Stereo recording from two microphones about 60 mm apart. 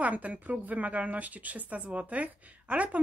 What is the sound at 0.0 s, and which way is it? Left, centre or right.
Speech, right.